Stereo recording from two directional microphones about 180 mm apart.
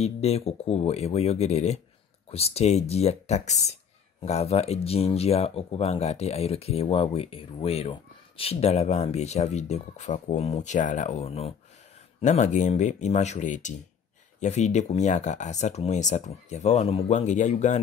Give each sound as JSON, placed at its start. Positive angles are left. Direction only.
{"t": 0.0, "sound": "speech", "side_deg": 35}